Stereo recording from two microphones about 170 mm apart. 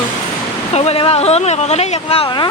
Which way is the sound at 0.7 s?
35° left (ahead or behind).